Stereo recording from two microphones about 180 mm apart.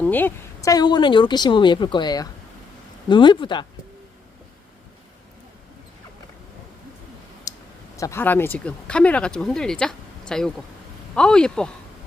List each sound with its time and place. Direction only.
0.0 s a woman's voice: 10° left (ahead or behind); by 3.7 s 25° left (ahead or behind)
7.5 s clicking: 20° left (ahead or behind)
7.9 s speech: 15° left (ahead or behind)